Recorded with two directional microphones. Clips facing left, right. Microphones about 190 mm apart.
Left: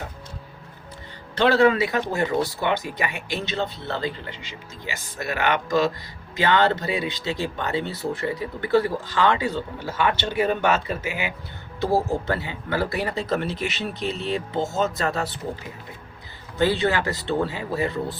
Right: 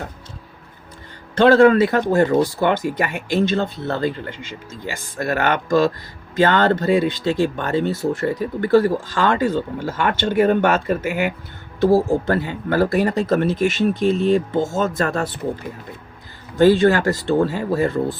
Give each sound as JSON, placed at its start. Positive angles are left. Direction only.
{"t": 1.4, "sound": "speech", "side_deg": -50}
{"t": 16.6, "sound": "speech", "side_deg": -45}